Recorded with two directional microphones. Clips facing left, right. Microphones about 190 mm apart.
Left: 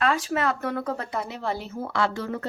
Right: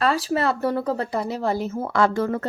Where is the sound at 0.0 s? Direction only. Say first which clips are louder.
Right 3 dB; 35° right (ahead or behind).